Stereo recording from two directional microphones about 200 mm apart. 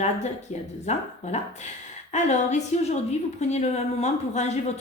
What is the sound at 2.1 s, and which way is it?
A woman's voice, 35° left (ahead or behind).